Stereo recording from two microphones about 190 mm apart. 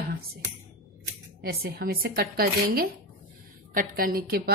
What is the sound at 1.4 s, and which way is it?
A woman's voice, 55° right (ahead or behind).